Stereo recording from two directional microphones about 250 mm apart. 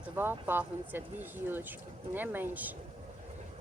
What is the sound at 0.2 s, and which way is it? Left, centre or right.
Speech, centre.